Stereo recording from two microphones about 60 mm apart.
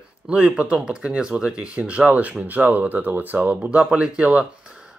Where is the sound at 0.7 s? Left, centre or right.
Centre.